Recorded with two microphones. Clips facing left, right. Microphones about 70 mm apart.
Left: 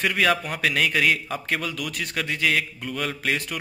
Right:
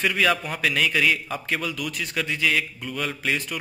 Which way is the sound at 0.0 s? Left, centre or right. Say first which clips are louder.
Even; left.